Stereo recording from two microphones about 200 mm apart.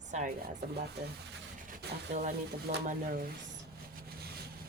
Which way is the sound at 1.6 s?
45° right (ahead or behind).